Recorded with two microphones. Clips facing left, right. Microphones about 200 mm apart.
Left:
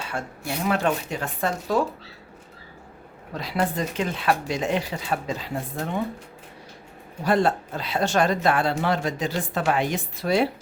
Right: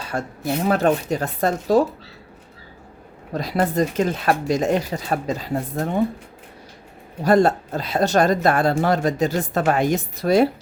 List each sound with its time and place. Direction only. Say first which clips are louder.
0.0 s speech: right 5 dB; 40° right (ahead or behind)
3.3 s speech: right 5 dB; 45° right (ahead or behind)
7.3 s speech: right 5 dB; 40° right (ahead or behind)